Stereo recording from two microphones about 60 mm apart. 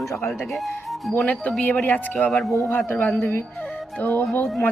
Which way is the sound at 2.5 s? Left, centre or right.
Left.